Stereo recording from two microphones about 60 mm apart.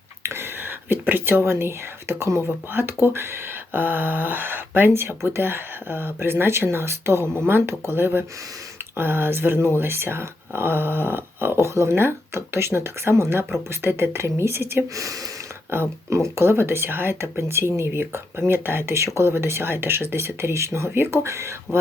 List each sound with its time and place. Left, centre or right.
0.2 s whispering: right
2.7 s speech: right
14.9 s speech: right
15.7 s speech: right